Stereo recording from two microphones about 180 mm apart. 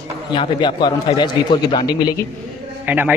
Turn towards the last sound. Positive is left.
turn(degrees=-10)  # may be behind; listen again after turning